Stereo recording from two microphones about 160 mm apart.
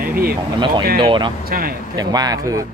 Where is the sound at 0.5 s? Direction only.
30° right (ahead or behind).